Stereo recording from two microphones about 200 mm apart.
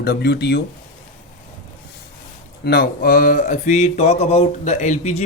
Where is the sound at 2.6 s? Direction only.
50° left (ahead or behind); by 5.3 s 35° left (ahead or behind).